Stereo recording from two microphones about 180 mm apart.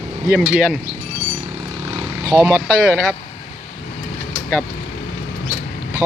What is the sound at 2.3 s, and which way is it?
Speech, 15° right (ahead or behind).